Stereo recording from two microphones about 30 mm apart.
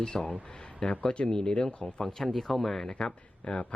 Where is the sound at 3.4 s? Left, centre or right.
Left.